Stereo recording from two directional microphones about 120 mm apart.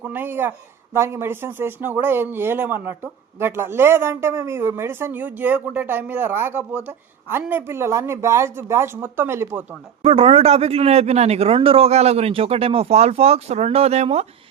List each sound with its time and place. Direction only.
0.0 s speech: 15° right (ahead or behind)
10.0 s a man's voice: 55° right (ahead or behind)